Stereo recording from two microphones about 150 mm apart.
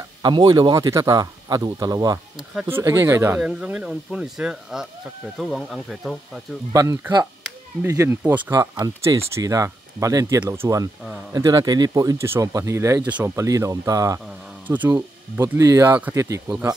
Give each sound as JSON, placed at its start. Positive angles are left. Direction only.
{"t": 0.2, "sound": "speech", "side_deg": -30}
{"t": 6.7, "sound": "speech", "side_deg": -20}
{"t": 14.2, "sound": "speech", "side_deg": -10}